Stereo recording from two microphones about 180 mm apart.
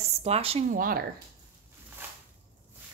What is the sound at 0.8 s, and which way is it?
Speech, 50° right (ahead or behind).